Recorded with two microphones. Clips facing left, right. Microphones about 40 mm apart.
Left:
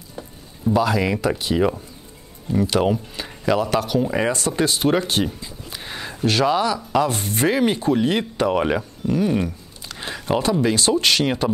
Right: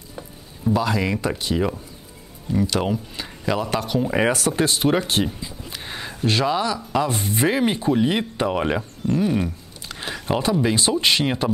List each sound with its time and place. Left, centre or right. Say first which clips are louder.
0.7 s speech: left 2 dB; centre
9.9 s a sound: left 2 dB; centre
10.6 s speech: left 1 dB; centre